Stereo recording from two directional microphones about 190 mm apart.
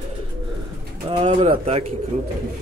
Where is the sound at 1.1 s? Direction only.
30° right (ahead or behind).